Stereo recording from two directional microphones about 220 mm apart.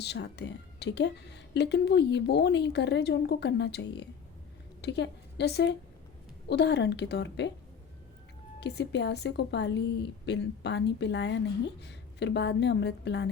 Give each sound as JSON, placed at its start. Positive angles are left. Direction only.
{"t": 0.0, "sound": "a woman's voice", "side_deg": 50}
{"t": 8.6, "sound": "a woman's voice", "side_deg": 50}